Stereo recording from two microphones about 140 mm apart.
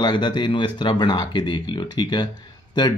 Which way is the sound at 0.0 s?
35° left (ahead or behind).